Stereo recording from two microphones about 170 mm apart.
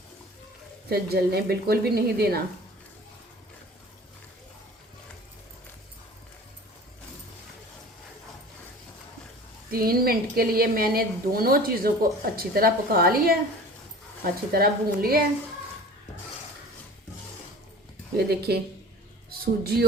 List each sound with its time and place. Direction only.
0.9 s a woman's voice: 65° right (ahead or behind)
9.7 s a woman's voice: 60° right (ahead or behind)
14.5 s a woman's voice: 60° right (ahead or behind)
18.2 s speech: 70° right (ahead or behind)